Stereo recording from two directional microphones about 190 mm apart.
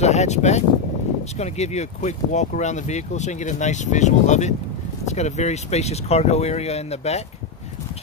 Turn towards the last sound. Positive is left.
turn(degrees=35)  # may be behind; listen again after turning